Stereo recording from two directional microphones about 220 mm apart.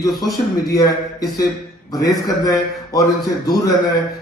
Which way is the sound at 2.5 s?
15° left (ahead or behind).